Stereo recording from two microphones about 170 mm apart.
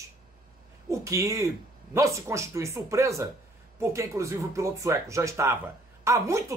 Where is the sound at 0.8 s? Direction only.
20° right (ahead or behind).